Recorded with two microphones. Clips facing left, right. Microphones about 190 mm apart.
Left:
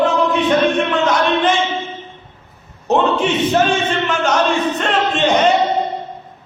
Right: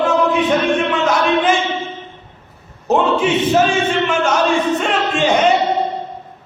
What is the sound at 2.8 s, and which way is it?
Music, 5° right (ahead or behind).